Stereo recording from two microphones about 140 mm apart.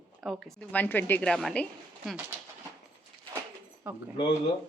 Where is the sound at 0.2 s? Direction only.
Centre (ahead or behind).